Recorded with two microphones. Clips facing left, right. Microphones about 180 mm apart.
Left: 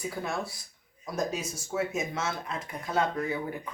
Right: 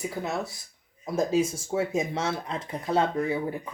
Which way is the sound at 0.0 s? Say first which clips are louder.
Right 3 dB; 20° right (ahead or behind).